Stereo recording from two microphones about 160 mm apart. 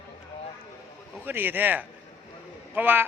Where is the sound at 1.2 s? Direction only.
10° right (ahead or behind).